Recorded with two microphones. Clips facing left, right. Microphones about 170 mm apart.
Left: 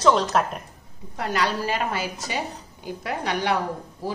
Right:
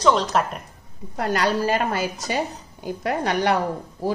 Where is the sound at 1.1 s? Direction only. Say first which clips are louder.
Right 3 dB; 45° right (ahead or behind).